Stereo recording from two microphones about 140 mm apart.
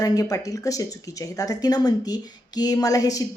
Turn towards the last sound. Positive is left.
turn(degrees=25)  # may be behind; listen again after turning